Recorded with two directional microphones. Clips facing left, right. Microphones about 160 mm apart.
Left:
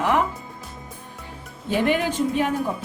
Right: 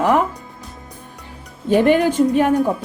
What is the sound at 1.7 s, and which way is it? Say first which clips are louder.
Speech: right 7 dB; 45° right (ahead or behind).